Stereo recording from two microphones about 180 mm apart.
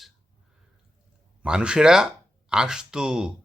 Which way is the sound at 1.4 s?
5° right (ahead or behind).